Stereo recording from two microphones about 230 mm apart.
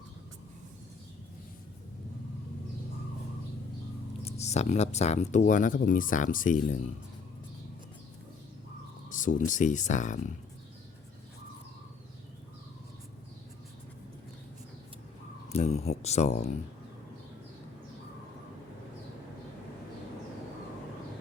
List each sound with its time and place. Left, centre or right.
4.2 s speech: left
9.0 s a sound: left
9.5 s speech: left
15.4 s speech: left